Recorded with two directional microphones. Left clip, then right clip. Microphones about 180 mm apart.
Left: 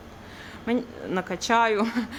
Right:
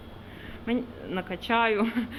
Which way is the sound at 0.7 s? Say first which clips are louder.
Left 3 dB; 30° left (ahead or behind).